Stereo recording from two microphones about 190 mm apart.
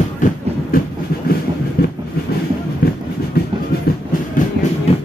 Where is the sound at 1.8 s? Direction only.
55° left (ahead or behind).